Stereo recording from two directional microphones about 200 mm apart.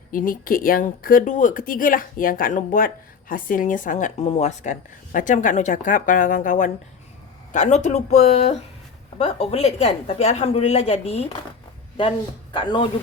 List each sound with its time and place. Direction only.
0.1 s speech: 45° left (ahead or behind); by 12.9 s 25° left (ahead or behind)